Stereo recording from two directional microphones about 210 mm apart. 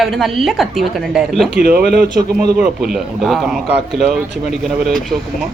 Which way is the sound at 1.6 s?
45° right (ahead or behind).